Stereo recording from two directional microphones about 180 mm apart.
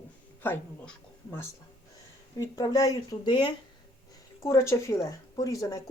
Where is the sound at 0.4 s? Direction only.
10° left (ahead or behind).